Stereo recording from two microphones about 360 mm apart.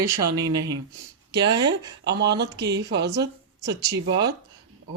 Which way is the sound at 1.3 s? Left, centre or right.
Right.